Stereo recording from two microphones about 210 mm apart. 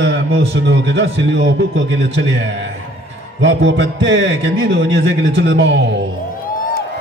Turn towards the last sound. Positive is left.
turn(degrees=-55)  # may be behind; listen again after turning